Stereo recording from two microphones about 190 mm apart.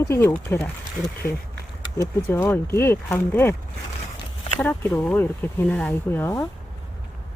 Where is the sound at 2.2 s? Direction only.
10° left (ahead or behind).